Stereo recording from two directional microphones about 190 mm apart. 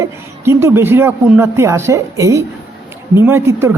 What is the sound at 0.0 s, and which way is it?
Speech, 10° right (ahead or behind).